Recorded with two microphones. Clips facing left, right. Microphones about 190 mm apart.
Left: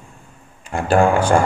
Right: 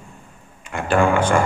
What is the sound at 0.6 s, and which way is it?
Speech, 35° left (ahead or behind).